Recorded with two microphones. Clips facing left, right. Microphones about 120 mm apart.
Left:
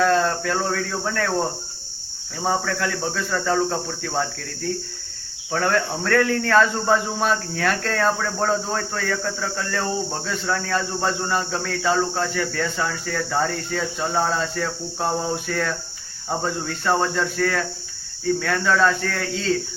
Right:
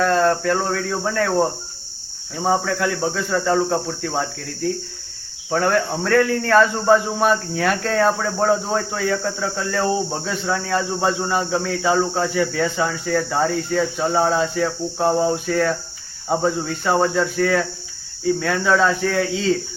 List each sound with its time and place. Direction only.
0.0 s speech: centre (ahead or behind)
2.3 s speech: 5° right (ahead or behind)